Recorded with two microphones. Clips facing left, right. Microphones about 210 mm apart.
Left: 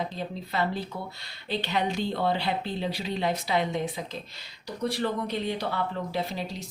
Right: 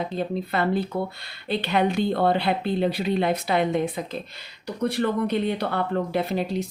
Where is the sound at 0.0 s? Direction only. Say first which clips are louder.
Right 6 dB; 55° right (ahead or behind).